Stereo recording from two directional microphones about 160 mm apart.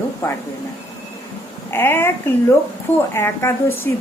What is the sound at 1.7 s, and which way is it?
Speech, 15° left (ahead or behind).